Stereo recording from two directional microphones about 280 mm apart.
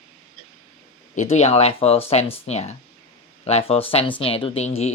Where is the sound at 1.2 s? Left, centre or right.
Left.